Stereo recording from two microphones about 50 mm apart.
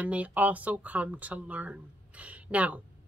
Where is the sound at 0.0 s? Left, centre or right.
Right.